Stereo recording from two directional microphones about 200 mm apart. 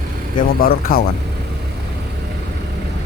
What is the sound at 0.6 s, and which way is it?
Speech, 50° left (ahead or behind).